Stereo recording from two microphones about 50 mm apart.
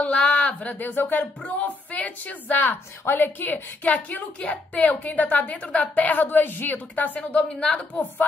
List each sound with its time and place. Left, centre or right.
0.0 s speech: centre; by 1.2 s left
1.5 s a sound: left
3.1 s a woman's voice: left
7.2 s a woman's voice: left